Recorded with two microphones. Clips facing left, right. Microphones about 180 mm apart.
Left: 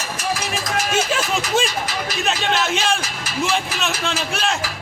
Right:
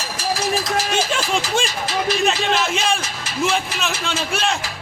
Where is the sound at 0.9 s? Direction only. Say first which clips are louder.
Even; 5° left (ahead or behind).